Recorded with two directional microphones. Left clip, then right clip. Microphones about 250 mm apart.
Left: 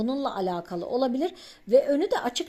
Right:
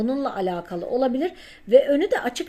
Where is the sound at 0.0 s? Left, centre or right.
Centre.